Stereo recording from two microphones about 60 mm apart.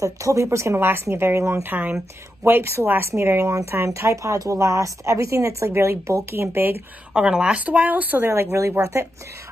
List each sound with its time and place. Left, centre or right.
0.0 s speech: right
2.4 s speech: right
4.1 s a woman's voice: right
7.2 s speech: centre
8.3 s speech: right